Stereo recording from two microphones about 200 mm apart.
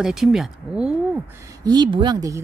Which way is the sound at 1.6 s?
20° right (ahead or behind).